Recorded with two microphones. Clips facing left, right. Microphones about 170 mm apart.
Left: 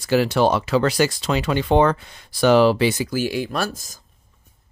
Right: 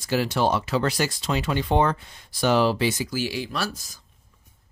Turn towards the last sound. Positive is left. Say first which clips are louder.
# left 4 dB
turn(degrees=45)  # may be behind; listen again after turning